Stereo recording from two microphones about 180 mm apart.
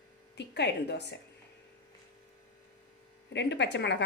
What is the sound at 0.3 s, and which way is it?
Speech, 70° left (ahead or behind).